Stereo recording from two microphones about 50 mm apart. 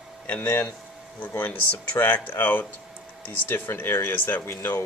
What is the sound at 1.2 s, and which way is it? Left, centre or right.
Speech, left.